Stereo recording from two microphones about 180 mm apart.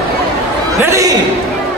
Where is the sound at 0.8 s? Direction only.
15° right (ahead or behind).